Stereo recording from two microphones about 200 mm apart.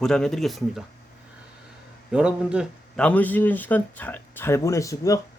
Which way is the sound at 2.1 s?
5° right (ahead or behind).